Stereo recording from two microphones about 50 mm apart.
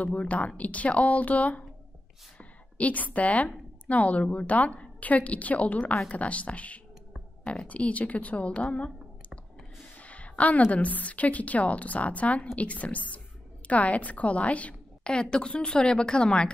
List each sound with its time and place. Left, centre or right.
0.0 s a woman's voice: left